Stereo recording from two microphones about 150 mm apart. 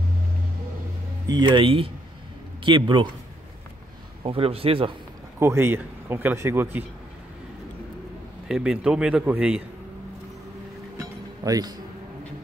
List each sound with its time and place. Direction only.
1.2 s speech: 30° right (ahead or behind)
4.2 s speech: 40° right (ahead or behind)
5.4 s speech: 15° right (ahead or behind)
8.5 s a man's voice: 5° right (ahead or behind)
11.0 s music: 25° right (ahead or behind)